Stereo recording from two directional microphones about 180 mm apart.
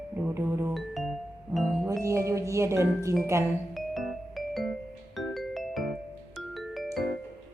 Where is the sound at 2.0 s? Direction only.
15° right (ahead or behind).